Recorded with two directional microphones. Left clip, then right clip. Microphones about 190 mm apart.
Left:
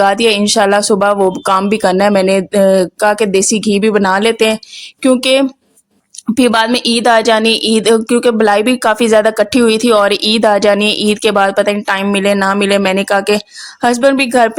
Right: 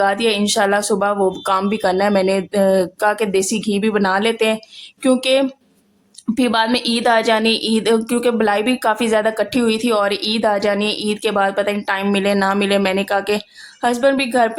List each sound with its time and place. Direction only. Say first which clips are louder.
0.0 s a woman's voice: left 6 dB; 35° left (ahead or behind)